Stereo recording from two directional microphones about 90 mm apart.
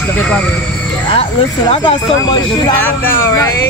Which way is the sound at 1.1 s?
75° left (ahead or behind).